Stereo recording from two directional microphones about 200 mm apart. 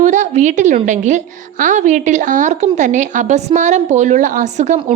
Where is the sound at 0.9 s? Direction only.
40° right (ahead or behind).